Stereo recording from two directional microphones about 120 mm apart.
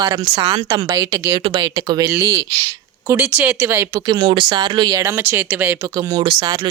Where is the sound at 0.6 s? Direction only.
30° right (ahead or behind).